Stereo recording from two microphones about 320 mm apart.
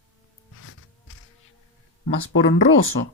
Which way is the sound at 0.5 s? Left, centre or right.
Left.